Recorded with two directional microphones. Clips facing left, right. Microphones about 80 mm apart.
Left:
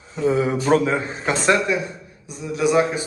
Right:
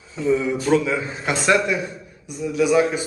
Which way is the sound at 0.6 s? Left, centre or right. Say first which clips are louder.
Left 1 dB; left.